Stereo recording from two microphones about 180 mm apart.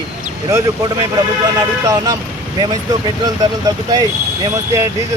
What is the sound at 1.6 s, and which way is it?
Speech, 20° right (ahead or behind).